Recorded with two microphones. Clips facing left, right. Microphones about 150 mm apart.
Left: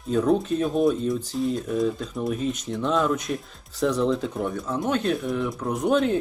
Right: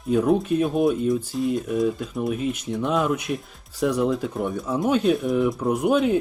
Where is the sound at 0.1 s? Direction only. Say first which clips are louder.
Right 2 dB; 10° right (ahead or behind).